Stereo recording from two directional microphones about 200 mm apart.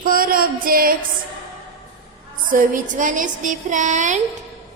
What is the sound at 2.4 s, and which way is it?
A woman's voice, 40° right (ahead or behind).